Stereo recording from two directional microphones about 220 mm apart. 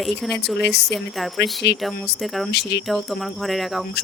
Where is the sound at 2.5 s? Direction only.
50° left (ahead or behind).